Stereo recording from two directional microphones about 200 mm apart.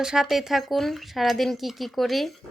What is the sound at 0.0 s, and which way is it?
Speech, 5° right (ahead or behind).